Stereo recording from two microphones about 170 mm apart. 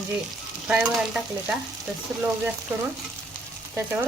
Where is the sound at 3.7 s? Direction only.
10° right (ahead or behind).